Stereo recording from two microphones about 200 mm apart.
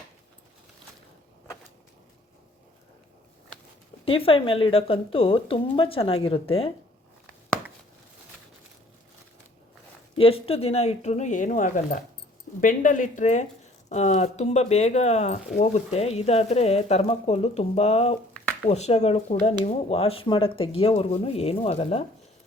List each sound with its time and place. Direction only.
4.0 s speech: 30° left (ahead or behind)
10.2 s speech: 30° left (ahead or behind)